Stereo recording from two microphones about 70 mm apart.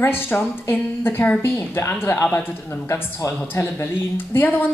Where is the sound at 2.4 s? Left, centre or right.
Left.